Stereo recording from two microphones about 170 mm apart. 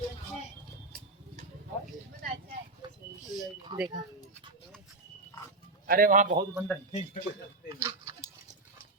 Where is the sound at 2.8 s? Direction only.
25° right (ahead or behind).